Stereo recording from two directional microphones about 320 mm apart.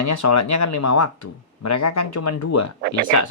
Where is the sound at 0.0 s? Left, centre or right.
Left.